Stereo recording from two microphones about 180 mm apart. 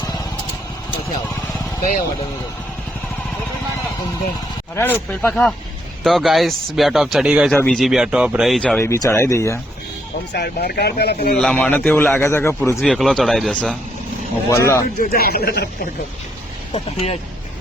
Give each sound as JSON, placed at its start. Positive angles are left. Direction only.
{"t": 4.7, "sound": "a man's voice", "side_deg": 15}
{"t": 7.5, "sound": "speech", "side_deg": 5}
{"t": 8.8, "sound": "a man's voice", "side_deg": 15}
{"t": 10.3, "sound": "speech", "side_deg": 65}
{"t": 11.3, "sound": "a man's voice", "side_deg": 5}
{"t": 12.8, "sound": "speech", "side_deg": 0}
{"t": 14.5, "sound": "a man's voice", "side_deg": 15}
{"t": 14.9, "sound": "speech", "side_deg": 60}
{"t": 16.7, "sound": "speech", "side_deg": 30}